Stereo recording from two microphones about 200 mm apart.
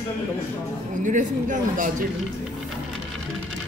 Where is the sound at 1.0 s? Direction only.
40° right (ahead or behind).